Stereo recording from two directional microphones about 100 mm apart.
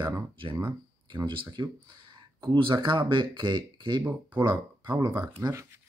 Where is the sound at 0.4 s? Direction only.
60° right (ahead or behind).